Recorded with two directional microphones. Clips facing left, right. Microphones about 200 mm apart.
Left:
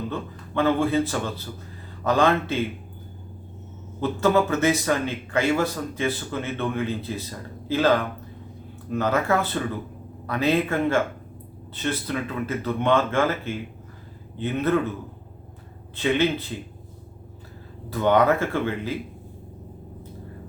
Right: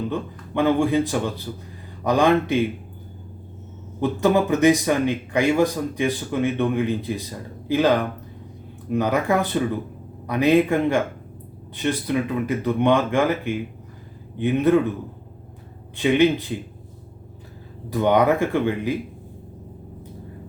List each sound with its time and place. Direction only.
0.1 s speech: 15° right (ahead or behind)
4.0 s speech: 15° right (ahead or behind)
16.0 s speech: 15° right (ahead or behind)
17.8 s speech: 15° right (ahead or behind)